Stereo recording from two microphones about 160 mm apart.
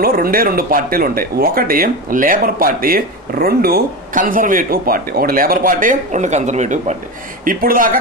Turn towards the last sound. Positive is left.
turn(degrees=-65)  # may be behind; listen again after turning